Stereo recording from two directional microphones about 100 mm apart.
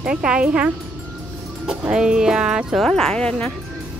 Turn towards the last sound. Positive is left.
turn(degrees=10)  # may be behind; listen again after turning